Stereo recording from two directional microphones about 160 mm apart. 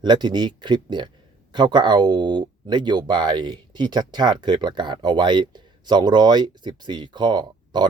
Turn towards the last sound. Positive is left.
turn(degrees=-30)  # may be behind; listen again after turning